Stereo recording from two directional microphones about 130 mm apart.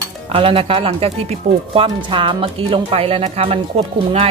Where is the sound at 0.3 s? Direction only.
45° right (ahead or behind).